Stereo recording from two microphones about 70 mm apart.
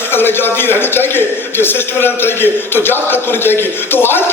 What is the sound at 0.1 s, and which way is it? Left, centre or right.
A man's voice, left.